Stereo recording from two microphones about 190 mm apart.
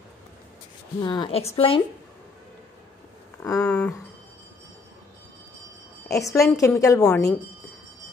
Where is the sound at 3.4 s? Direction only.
15° left (ahead or behind).